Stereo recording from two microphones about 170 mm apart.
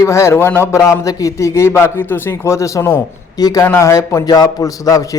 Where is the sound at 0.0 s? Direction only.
15° left (ahead or behind).